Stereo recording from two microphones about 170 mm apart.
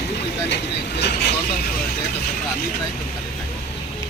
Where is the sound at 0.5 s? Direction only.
85° left.